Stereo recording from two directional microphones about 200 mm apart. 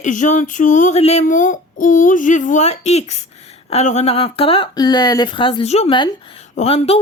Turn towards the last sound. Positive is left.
turn(degrees=30)  # may be behind; listen again after turning